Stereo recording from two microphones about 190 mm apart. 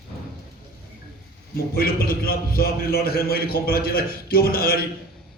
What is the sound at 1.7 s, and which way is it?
A man's voice, 50° left (ahead or behind).